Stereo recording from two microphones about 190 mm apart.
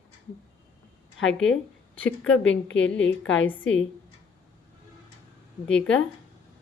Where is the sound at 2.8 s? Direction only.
75° left (ahead or behind).